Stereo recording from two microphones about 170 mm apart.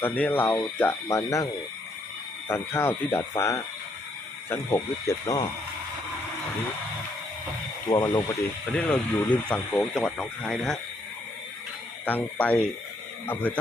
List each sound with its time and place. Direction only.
0.0 s speech: 10° left (ahead or behind)
2.5 s speech: 15° left (ahead or behind)
7.9 s speech: 25° left (ahead or behind)
8.7 s speech: 5° left (ahead or behind)
12.0 s speech: 10° left (ahead or behind)